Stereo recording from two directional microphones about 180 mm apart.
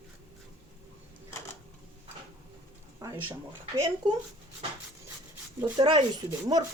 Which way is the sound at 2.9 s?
20° right (ahead or behind).